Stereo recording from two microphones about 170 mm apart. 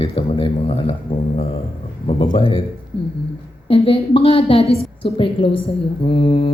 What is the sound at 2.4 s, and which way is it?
Speech, 30° left (ahead or behind).